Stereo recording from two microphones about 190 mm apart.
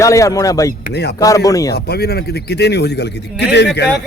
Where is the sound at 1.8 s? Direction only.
55° left (ahead or behind).